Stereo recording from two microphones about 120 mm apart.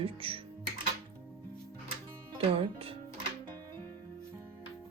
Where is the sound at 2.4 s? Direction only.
50° right (ahead or behind).